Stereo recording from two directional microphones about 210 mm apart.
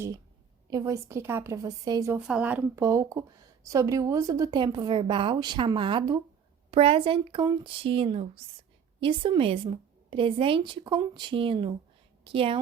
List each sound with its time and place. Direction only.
0.7 s a woman's voice: 15° right (ahead or behind)